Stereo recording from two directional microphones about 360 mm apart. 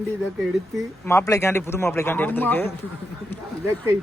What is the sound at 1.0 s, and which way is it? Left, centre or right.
Speech, centre.